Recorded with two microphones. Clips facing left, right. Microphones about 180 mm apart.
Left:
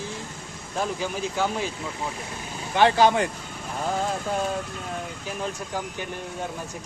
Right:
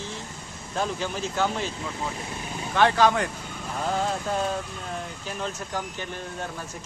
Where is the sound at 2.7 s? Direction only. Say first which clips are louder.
Left 2 dB; 25° left (ahead or behind).